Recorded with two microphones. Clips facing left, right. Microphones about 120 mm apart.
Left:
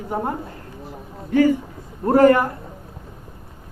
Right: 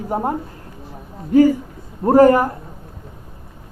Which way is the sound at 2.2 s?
40° right (ahead or behind).